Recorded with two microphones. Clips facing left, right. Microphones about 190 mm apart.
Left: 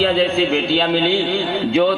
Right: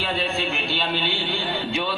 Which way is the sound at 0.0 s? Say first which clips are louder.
Left 10 dB; 90° left.